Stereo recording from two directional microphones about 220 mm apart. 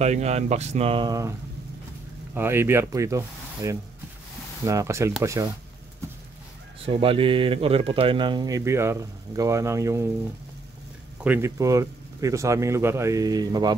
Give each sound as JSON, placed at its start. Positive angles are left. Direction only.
{"t": 0.0, "sound": "speech", "side_deg": -30}
{"t": 2.3, "sound": "speech", "side_deg": -10}
{"t": 6.9, "sound": "speech", "side_deg": -25}
{"t": 11.2, "sound": "speech", "side_deg": -10}